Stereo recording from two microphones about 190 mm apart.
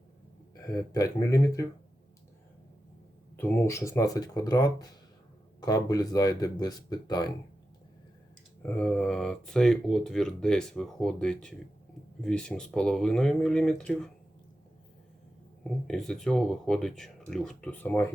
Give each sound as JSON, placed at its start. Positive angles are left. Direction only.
{"t": 0.6, "sound": "speech", "side_deg": 20}
{"t": 3.3, "sound": "speech", "side_deg": 10}
{"t": 8.6, "sound": "speech", "side_deg": 5}
{"t": 15.6, "sound": "speech", "side_deg": 5}